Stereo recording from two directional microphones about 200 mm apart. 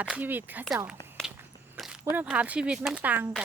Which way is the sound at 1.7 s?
Centre (ahead or behind).